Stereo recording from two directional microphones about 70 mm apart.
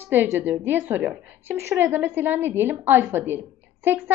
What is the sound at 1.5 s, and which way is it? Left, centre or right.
Speech, right.